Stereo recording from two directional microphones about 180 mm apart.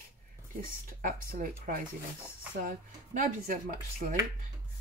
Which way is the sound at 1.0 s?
45° right (ahead or behind).